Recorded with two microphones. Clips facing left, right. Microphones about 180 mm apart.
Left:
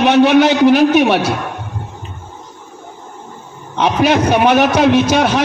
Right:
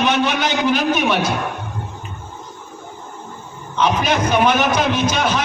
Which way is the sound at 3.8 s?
65° left (ahead or behind).